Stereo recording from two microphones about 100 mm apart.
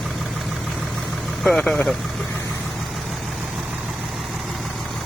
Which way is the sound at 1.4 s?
5° left (ahead or behind).